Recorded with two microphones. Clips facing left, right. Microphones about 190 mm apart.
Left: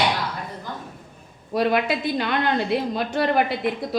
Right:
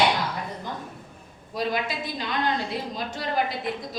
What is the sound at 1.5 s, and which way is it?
A woman's voice, 65° left (ahead or behind).